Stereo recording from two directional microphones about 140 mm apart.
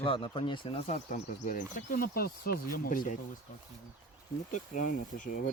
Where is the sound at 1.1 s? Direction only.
70° left (ahead or behind).